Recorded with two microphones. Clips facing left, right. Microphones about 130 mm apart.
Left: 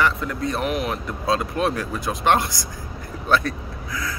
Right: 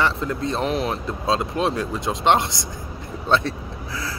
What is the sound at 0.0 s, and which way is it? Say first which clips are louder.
Speech: even; 25° right (ahead or behind).